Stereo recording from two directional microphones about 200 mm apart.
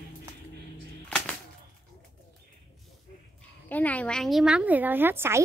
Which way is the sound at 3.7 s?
10° left (ahead or behind).